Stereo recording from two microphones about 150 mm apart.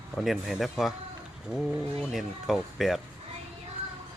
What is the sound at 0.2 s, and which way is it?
Speech, centre (ahead or behind).